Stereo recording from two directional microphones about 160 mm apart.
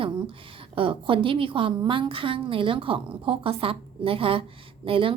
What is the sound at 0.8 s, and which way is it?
A woman's voice, 35° right (ahead or behind).